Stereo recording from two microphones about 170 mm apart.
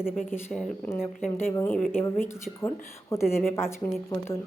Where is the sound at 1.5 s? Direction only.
15° left (ahead or behind).